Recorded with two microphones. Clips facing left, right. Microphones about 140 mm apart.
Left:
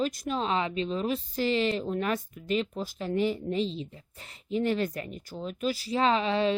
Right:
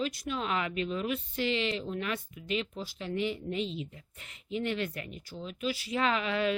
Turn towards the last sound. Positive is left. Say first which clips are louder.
# left 4 dB
turn(degrees=30)  # may be behind; listen again after turning